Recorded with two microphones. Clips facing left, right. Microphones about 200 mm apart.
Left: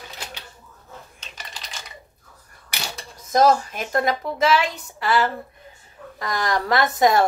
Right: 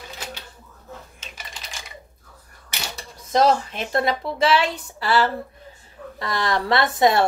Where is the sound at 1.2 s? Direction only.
5° right (ahead or behind).